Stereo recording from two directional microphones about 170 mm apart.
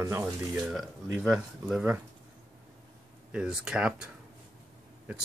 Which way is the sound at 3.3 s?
5° right (ahead or behind).